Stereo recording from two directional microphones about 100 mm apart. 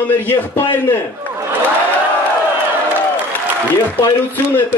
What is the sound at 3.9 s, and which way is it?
Speech, 20° left (ahead or behind).